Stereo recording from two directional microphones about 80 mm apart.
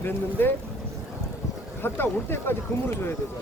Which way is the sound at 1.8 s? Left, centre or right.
Left.